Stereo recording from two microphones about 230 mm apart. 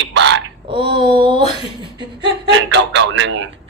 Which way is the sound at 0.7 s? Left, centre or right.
Right.